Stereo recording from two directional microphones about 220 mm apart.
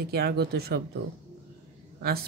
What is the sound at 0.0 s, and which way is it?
Speech, 45° right (ahead or behind).